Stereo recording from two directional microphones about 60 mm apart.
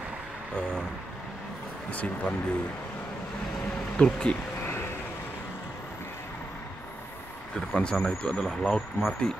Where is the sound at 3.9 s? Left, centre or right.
Centre.